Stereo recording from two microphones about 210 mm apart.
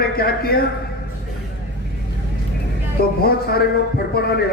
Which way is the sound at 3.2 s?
45° left (ahead or behind).